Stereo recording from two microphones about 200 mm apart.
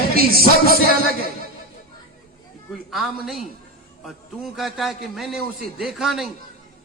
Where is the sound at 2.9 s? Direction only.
Centre (ahead or behind).